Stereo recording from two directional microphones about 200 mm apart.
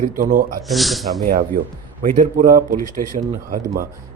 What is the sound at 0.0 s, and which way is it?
Speech, 45° right (ahead or behind).